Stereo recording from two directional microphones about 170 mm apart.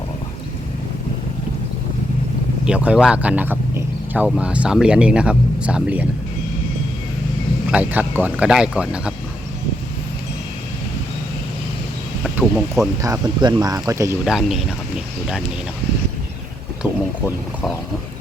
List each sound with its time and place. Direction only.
2.6 s speech: 5° right (ahead or behind)
7.7 s speech: 10° right (ahead or behind)
12.2 s speech: centre (ahead or behind)
13.0 s speech: 20° right (ahead or behind)
14.3 s speech: centre (ahead or behind)
16.8 s vehicle: 5° right (ahead or behind)